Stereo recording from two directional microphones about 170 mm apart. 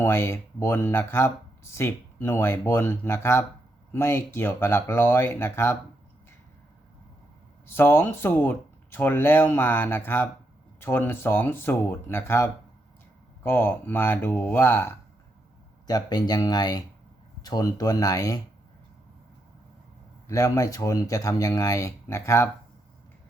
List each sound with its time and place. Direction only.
0.0 s speech: 15° left (ahead or behind)
7.7 s speech: 15° left (ahead or behind)
15.9 s speech: 25° left (ahead or behind)
20.2 s speech: 20° left (ahead or behind)